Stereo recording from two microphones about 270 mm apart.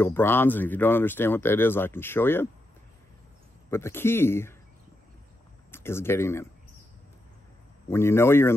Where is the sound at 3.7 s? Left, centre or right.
Centre.